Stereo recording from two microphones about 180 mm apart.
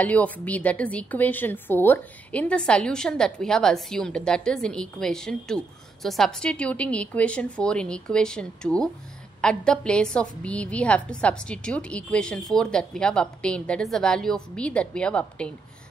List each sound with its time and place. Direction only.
0.0 s a woman's voice: 10° left (ahead or behind)